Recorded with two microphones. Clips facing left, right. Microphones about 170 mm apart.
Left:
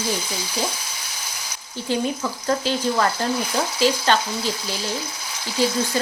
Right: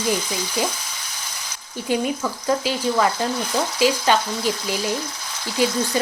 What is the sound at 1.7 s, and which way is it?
Speech, 10° right (ahead or behind).